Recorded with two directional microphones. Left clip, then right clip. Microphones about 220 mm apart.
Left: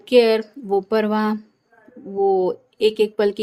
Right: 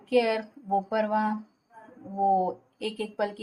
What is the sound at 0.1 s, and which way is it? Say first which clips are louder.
Speech: left 10 dB; 40° left (ahead or behind).